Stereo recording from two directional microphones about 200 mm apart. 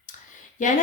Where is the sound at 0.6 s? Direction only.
40° left (ahead or behind).